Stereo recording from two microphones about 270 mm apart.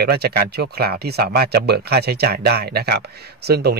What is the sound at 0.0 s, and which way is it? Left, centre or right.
Speech, right.